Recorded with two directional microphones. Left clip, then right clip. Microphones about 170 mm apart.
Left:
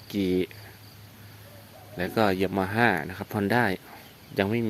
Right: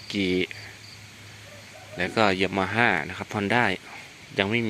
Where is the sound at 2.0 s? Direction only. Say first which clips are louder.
Right 2 dB; 20° left (ahead or behind).